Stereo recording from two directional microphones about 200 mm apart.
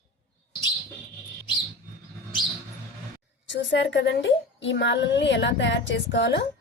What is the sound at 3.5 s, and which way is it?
A woman's voice, 65° left (ahead or behind).